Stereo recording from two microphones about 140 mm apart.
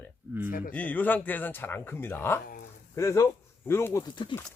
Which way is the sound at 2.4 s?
90° left.